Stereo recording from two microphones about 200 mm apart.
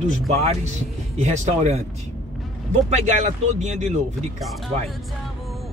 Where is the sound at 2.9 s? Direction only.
35° right (ahead or behind).